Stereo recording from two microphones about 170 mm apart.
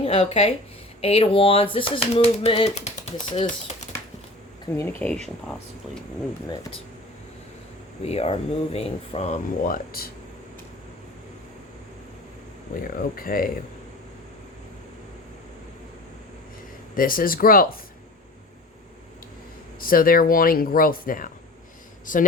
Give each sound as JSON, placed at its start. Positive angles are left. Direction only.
{"t": 0.0, "sound": "speech", "side_deg": 35}
{"t": 4.9, "sound": "speech", "side_deg": 10}
{"t": 8.0, "sound": "speech", "side_deg": 35}
{"t": 9.6, "sound": "speech", "side_deg": 60}
{"t": 12.9, "sound": "speech", "side_deg": 55}
{"t": 16.9, "sound": "speech", "side_deg": 55}
{"t": 19.8, "sound": "speech", "side_deg": 60}